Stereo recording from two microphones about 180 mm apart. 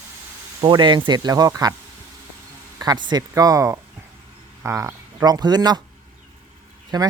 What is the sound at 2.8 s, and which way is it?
Speech, 25° right (ahead or behind).